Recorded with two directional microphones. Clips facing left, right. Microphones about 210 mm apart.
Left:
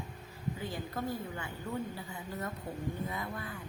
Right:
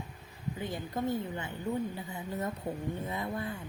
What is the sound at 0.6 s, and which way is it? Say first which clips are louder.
Speech: right 5 dB; 20° right (ahead or behind).